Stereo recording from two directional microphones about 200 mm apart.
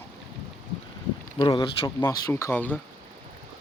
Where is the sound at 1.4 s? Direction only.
20° left (ahead or behind).